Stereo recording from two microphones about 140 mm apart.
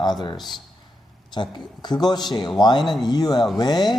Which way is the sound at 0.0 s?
30° left (ahead or behind).